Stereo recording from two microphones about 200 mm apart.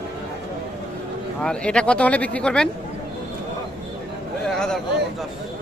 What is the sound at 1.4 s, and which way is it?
Speech, 5° left (ahead or behind).